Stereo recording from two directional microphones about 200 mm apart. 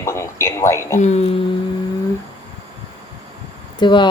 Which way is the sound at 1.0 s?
35° left (ahead or behind).